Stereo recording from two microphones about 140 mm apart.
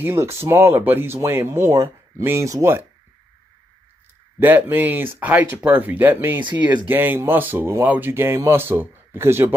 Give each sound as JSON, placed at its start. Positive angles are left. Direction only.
{"t": 0.0, "sound": "speech", "side_deg": -20}
{"t": 4.4, "sound": "speech", "side_deg": -15}